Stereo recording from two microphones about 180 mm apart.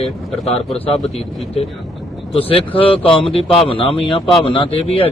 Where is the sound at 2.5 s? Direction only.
30° left (ahead or behind).